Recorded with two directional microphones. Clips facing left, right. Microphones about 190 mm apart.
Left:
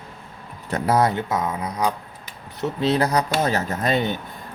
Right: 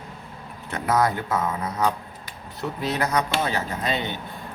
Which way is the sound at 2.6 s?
30° left (ahead or behind).